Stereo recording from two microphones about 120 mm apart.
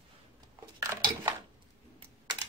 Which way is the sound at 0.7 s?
25° right (ahead or behind).